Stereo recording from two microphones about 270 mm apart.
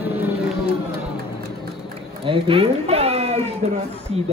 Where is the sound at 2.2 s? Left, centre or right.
Centre.